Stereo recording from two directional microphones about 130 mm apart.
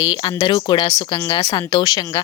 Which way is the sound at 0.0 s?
35° left (ahead or behind).